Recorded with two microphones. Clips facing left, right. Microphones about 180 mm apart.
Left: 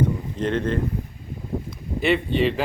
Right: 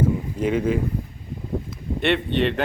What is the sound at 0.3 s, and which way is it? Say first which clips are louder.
Speech: right 1 dB; 10° right (ahead or behind).